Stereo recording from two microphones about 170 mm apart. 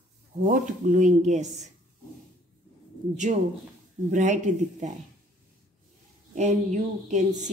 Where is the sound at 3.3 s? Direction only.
45° right (ahead or behind).